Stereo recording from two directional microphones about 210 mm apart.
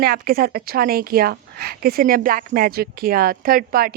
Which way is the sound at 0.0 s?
45° right (ahead or behind).